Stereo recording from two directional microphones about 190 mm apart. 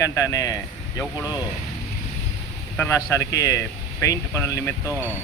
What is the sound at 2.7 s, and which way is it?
A man's voice, 10° left (ahead or behind).